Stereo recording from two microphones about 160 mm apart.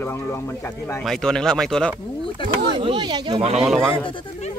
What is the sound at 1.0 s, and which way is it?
Speech, centre (ahead or behind).